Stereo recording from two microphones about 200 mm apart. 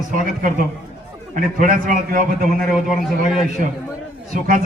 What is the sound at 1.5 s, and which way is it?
Speech, 45° right (ahead or behind).